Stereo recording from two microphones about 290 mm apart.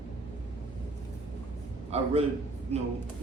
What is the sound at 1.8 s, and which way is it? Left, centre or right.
Speech, right.